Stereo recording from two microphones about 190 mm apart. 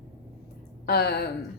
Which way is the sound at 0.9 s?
60° left (ahead or behind).